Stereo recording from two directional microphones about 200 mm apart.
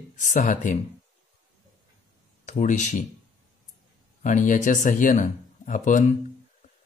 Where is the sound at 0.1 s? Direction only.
40° left (ahead or behind).